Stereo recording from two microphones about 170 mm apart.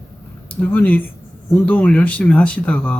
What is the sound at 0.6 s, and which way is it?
Speech, 10° left (ahead or behind).